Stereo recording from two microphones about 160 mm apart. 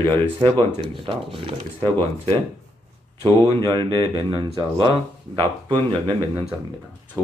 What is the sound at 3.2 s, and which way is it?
Speech, 30° right (ahead or behind).